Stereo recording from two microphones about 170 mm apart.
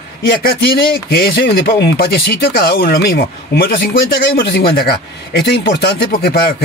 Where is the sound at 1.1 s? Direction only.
65° left (ahead or behind).